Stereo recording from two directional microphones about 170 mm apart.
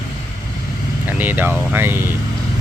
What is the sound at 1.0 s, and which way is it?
Speech, 10° right (ahead or behind).